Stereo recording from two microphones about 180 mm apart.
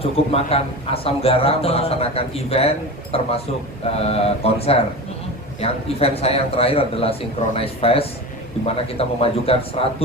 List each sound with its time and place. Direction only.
0.0 s a man's voice: 35° left (ahead or behind)